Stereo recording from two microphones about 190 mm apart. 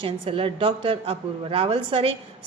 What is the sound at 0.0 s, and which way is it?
A woman's voice, 30° right (ahead or behind).